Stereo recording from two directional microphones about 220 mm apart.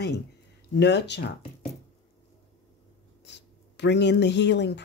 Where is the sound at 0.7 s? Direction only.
50° left (ahead or behind).